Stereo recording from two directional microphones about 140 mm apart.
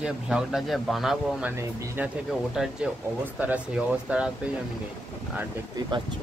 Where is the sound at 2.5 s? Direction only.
5° right (ahead or behind).